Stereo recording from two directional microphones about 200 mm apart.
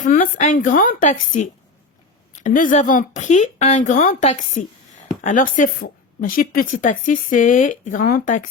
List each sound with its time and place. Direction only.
0.0 s a woman's voice: 40° left (ahead or behind)